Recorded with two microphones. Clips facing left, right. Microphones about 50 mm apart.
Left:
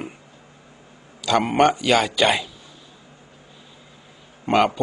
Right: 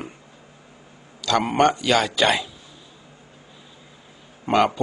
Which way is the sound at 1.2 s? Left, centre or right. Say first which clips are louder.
Left 1 dB; centre.